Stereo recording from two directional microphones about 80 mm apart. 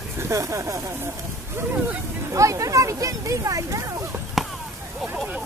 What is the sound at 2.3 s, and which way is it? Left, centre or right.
Speech, right.